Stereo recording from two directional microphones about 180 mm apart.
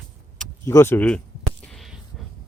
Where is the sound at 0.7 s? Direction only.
15° left (ahead or behind).